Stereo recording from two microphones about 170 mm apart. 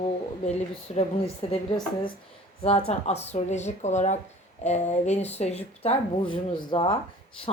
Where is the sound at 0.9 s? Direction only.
35° left (ahead or behind).